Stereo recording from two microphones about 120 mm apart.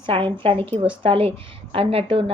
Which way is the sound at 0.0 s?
45° right (ahead or behind).